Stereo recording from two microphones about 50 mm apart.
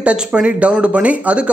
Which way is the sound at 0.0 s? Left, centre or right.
Right.